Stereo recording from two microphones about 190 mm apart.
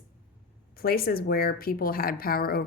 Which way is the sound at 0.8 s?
55° left (ahead or behind).